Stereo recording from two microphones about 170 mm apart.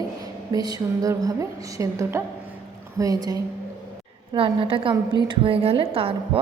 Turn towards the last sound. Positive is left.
turn(degrees=-35)  # may be behind; listen again after turning